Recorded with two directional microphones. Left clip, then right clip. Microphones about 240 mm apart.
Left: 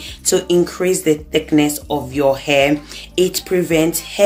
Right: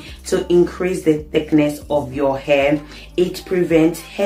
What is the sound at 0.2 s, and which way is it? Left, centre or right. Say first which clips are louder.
Speech: even; left.